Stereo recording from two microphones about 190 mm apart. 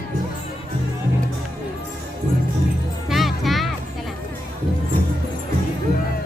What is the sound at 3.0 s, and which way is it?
Music, centre (ahead or behind).